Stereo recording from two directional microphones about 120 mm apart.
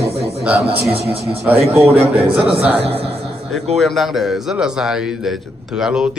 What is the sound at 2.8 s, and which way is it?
Speech, 55° right (ahead or behind).